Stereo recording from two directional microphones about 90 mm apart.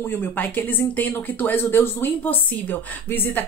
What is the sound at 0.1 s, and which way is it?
Speech, 20° left (ahead or behind).